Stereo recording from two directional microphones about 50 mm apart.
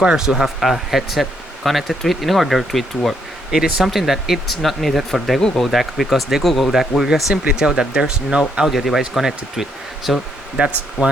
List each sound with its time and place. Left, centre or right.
0.0 s speech: centre
0.4 s speech: centre
8.6 s speech: centre
10.6 s speech: right